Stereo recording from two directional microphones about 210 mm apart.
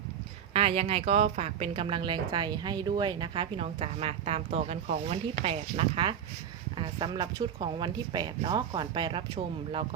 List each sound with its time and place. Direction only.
0.5 s speech: 25° right (ahead or behind)